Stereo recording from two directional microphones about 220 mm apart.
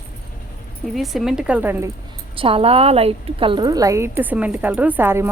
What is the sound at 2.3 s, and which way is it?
A woman's voice, 25° right (ahead or behind).